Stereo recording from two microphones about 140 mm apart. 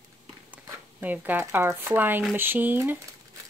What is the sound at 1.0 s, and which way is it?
Speech, 10° right (ahead or behind).